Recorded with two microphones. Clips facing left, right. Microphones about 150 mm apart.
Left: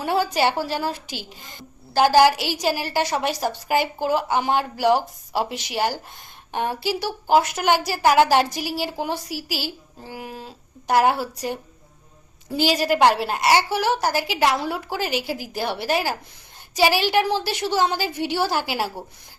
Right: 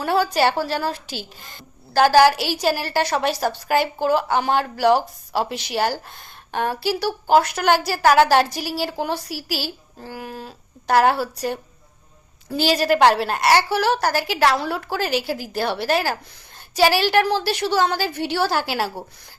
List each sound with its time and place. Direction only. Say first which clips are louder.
0.0 s a woman's voice: right 2 dB; 15° left (ahead or behind)